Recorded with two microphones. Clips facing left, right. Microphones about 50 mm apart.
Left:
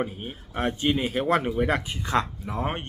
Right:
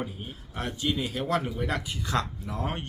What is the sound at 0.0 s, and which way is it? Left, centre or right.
Speech, left.